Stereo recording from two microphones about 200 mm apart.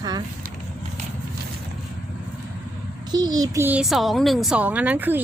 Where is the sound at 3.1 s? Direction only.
20° right (ahead or behind).